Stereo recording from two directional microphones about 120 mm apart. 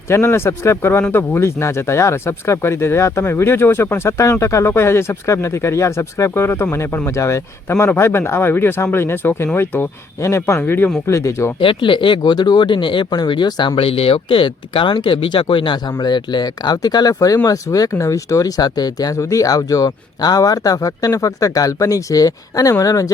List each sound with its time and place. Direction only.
0.1 s speech: 20° left (ahead or behind)
11.0 s speech: 25° left (ahead or behind)
11.6 s speech: 45° left (ahead or behind); by 23.1 s 30° left (ahead or behind)